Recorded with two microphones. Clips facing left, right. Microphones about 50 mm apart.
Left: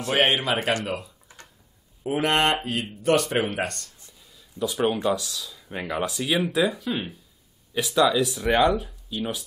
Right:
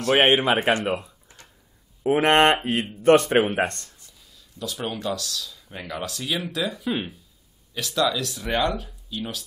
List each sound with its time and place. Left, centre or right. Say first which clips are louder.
0.1 s speech: right 4 dB; right
4.4 s speech: left 7 dB; centre
6.8 s speech: right 2 dB; centre
7.7 s speech: left 3 dB; centre